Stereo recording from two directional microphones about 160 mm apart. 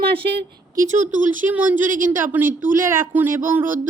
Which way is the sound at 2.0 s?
55° right (ahead or behind).